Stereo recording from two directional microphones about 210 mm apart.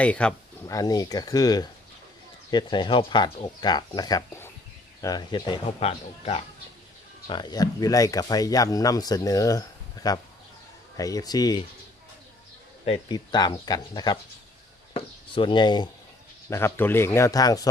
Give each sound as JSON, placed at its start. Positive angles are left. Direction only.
{"t": 0.0, "sound": "speech", "side_deg": 5}
{"t": 0.7, "sound": "speech", "side_deg": 15}
{"t": 12.8, "sound": "speech", "side_deg": 25}